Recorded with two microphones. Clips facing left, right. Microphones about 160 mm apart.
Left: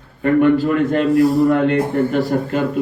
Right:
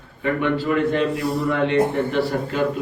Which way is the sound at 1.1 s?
Centre (ahead or behind).